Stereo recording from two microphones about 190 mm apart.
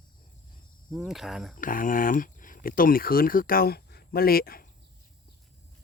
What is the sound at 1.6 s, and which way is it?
Speech, 45° left (ahead or behind).